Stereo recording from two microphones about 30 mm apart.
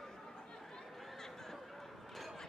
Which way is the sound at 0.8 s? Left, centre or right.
Centre.